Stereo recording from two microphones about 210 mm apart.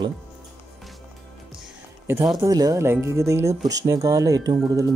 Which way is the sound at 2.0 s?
5° right (ahead or behind).